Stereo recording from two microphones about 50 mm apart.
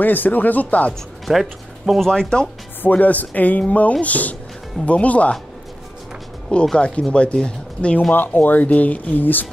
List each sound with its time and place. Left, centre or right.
0.0 s speech: left
1.2 s speech: centre
2.0 s speech: centre
2.8 s speech: left
6.5 s speech: centre
8.1 s speech: left